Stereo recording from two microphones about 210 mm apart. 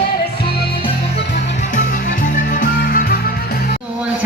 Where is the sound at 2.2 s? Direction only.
40° left (ahead or behind).